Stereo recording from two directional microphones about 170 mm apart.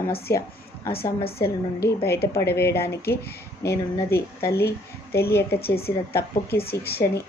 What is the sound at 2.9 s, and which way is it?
Speech, 70° left (ahead or behind).